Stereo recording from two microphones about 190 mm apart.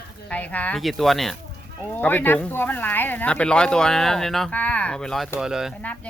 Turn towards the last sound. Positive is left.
turn(degrees=-5)  # may be behind; listen again after turning